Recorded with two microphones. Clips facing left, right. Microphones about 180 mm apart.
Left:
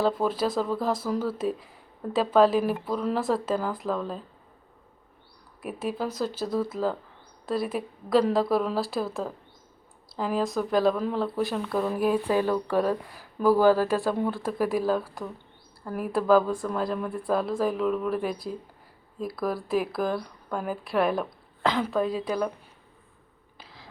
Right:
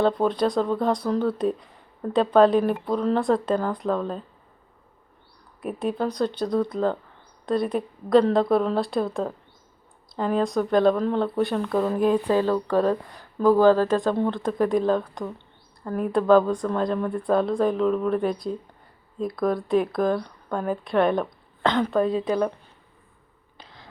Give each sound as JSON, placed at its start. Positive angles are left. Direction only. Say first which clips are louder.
{"t": 0.0, "sound": "speech", "louder": "right 4 dB", "side_deg": 5}
{"t": 5.6, "sound": "speech", "louder": "right 4 dB", "side_deg": 5}
{"t": 23.6, "sound": "a sound", "louder": "right 1 dB", "side_deg": 5}